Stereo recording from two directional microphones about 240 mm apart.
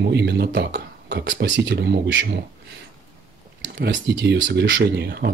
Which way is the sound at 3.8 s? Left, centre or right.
Right.